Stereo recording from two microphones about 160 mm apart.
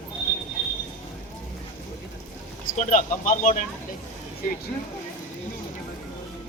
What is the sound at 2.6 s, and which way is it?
Speech, 50° left (ahead or behind).